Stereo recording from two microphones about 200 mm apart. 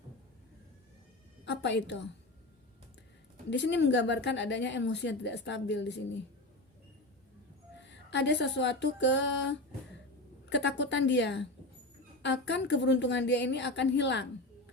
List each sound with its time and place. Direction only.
1.5 s a woman's voice: 60° left (ahead or behind)
3.5 s a woman's voice: 60° left (ahead or behind)
7.9 s a woman's voice: 60° left (ahead or behind)